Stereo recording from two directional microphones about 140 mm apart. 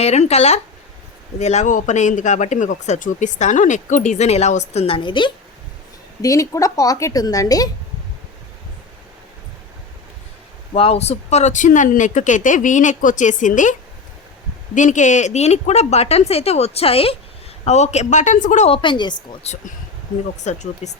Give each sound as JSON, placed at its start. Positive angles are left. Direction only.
{"t": 0.0, "sound": "a woman's voice", "side_deg": 50}
{"t": 6.2, "sound": "a woman's voice", "side_deg": 25}
{"t": 10.8, "sound": "a man's voice", "side_deg": 45}
{"t": 14.8, "sound": "a woman's voice", "side_deg": 60}
{"t": 18.7, "sound": "a woman's voice", "side_deg": 35}
{"t": 20.4, "sound": "a man's voice", "side_deg": 55}